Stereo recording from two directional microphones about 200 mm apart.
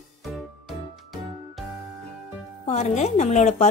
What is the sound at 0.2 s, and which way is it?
Music, centre (ahead or behind).